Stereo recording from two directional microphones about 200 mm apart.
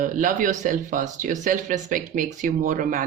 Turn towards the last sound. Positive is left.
turn(degrees=-40)  # may be behind; listen again after turning